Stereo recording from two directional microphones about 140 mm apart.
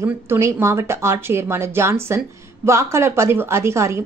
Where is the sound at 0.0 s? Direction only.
20° right (ahead or behind).